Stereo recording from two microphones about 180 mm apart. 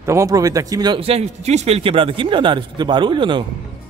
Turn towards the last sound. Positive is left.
turn(degrees=-25)  # may be behind; listen again after turning